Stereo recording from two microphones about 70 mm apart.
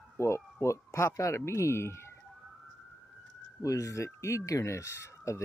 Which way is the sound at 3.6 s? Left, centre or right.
Left.